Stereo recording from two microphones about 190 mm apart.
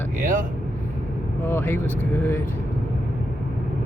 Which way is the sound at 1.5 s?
10° left (ahead or behind).